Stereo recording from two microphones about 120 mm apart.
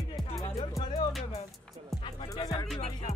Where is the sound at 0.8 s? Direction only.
40° left (ahead or behind).